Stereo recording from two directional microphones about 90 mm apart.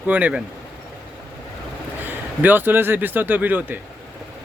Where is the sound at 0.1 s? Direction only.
15° right (ahead or behind).